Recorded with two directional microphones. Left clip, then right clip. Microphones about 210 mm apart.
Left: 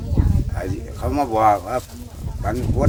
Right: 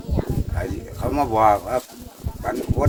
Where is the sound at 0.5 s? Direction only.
5° left (ahead or behind).